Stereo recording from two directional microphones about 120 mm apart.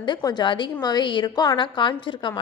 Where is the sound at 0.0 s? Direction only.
35° left (ahead or behind).